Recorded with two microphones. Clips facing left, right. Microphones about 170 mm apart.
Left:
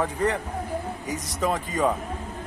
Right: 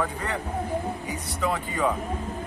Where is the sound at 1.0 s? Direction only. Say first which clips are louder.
Left 2 dB; 40° left (ahead or behind).